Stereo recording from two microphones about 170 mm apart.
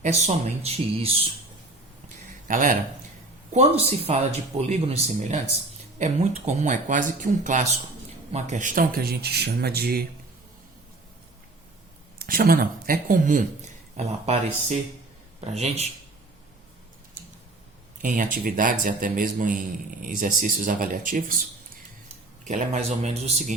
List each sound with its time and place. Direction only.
0.0 s speech: 40° right (ahead or behind)
2.0 s a sound: 50° right (ahead or behind)
3.5 s a man's voice: 35° right (ahead or behind); by 10.1 s 65° right (ahead or behind)
12.2 s speech: 60° right (ahead or behind)
13.9 s speech: 40° right (ahead or behind)
18.0 s a man's voice: 50° right (ahead or behind)
22.4 s speech: 40° right (ahead or behind)